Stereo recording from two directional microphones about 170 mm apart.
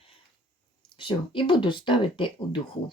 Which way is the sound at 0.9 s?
30° left (ahead or behind).